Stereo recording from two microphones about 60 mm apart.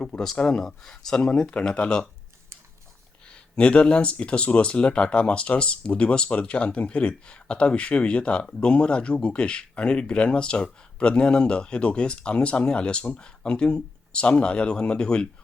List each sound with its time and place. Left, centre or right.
0.0 s speech: centre
3.2 s speech: centre